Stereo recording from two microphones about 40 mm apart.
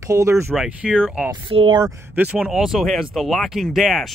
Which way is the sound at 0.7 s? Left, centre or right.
Right.